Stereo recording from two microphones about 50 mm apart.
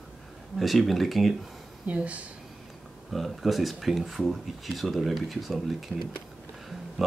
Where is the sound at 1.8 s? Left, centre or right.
Right.